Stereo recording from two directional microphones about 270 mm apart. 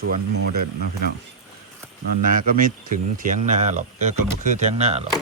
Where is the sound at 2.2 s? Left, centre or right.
Right.